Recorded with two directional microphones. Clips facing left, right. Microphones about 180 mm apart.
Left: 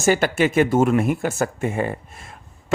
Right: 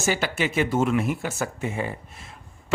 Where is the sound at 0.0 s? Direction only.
50° left (ahead or behind).